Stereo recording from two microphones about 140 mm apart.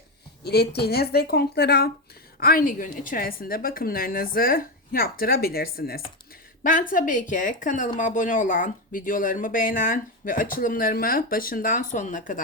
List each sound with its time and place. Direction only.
1.2 s a woman's voice: 90° left
6.6 s speech: 75° left (ahead or behind)